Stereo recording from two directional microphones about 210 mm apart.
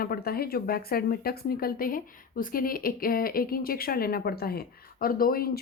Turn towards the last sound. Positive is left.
turn(degrees=45)  # may be behind; listen again after turning